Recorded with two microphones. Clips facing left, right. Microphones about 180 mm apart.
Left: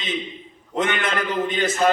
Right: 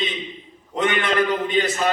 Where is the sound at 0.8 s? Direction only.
45° left (ahead or behind).